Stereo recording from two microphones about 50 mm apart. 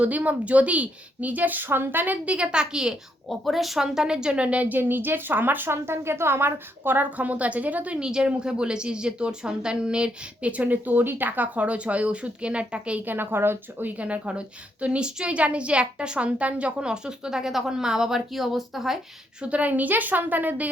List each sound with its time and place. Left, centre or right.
0.0 s a woman's voice: right
2.2 s speech: right
3.2 s speech: centre; by 5.7 s right
5.7 s a woman's voice: right
7.9 s speech: centre
13.1 s speech: right
13.8 s speech: right; by 18.9 s centre
19.4 s a woman's voice: right